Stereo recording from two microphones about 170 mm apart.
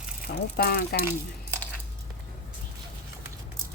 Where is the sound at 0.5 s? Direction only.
65° left (ahead or behind).